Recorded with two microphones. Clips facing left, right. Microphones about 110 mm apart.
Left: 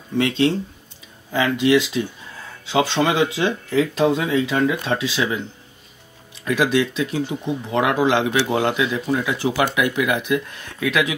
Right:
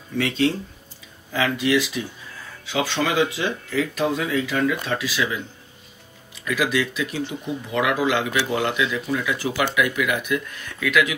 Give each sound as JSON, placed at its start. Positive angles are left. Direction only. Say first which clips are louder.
{"t": 0.2, "sound": "speech", "louder": "left 3 dB", "side_deg": 25}
{"t": 6.4, "sound": "speech", "louder": "left 4 dB", "side_deg": 30}